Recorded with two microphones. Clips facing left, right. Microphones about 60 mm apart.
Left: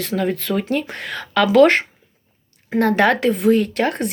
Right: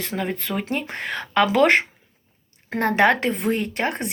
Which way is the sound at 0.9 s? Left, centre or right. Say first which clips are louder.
Left 1 dB; right.